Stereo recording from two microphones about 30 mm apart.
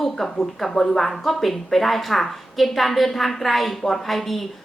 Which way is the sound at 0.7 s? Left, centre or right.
Centre.